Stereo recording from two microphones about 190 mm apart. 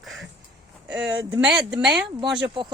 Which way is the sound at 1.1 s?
20° right (ahead or behind).